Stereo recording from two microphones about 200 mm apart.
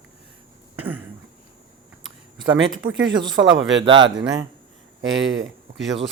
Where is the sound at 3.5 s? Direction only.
70° right (ahead or behind).